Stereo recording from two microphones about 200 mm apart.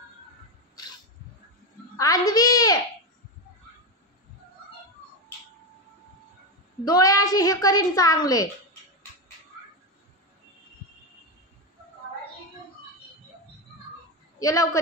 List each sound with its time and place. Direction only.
2.0 s a child's voice: 20° left (ahead or behind)
6.8 s a woman's voice: 20° left (ahead or behind)
14.4 s a woman's voice: 15° left (ahead or behind)